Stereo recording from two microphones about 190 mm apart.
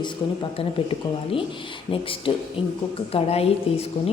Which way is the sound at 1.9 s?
30° left (ahead or behind).